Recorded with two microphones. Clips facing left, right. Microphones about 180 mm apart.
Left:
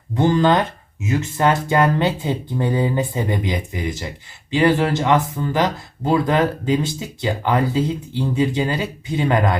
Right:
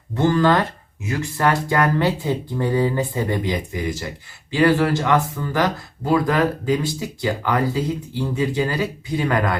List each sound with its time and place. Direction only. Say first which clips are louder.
0.2 s speech: left 1 dB; 20° left (ahead or behind)